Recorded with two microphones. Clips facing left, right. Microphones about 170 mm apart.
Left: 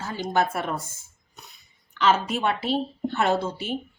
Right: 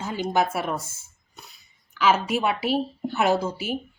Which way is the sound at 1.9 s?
5° right (ahead or behind).